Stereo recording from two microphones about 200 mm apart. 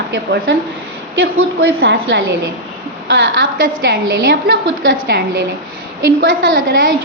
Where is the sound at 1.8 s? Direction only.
65° right (ahead or behind).